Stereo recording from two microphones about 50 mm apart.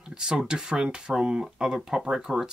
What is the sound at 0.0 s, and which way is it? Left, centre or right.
Speech, centre.